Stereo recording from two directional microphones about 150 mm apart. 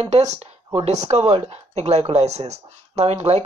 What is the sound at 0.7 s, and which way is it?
Speech, 45° right (ahead or behind).